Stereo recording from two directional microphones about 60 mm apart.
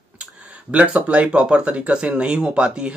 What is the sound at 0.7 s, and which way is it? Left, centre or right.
Speech, right.